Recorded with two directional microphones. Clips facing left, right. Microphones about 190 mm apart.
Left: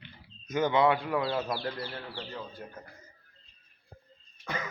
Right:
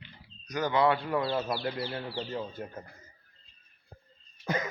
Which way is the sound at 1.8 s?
25° right (ahead or behind).